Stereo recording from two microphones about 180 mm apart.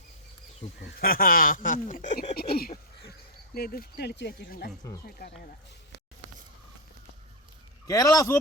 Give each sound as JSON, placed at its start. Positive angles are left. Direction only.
{"t": 0.8, "sound": "speech", "side_deg": 55}
{"t": 2.3, "sound": "speech", "side_deg": 55}
{"t": 7.9, "sound": "a man's voice", "side_deg": 20}